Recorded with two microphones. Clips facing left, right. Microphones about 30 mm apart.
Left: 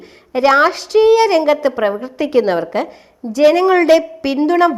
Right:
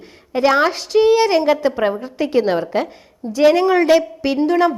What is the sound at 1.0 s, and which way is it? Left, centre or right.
A woman's voice, centre.